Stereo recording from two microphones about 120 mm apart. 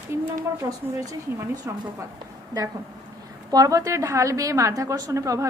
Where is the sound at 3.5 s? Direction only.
30° right (ahead or behind).